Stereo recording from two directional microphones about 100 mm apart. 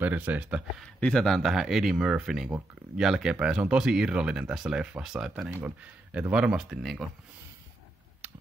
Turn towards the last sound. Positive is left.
turn(degrees=-5)  # may be behind; listen again after turning